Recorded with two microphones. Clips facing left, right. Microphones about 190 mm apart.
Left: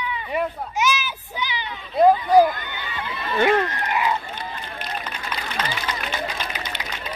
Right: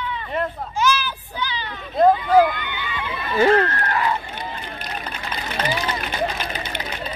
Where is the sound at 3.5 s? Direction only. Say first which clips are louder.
Right 3 dB; 15° left (ahead or behind).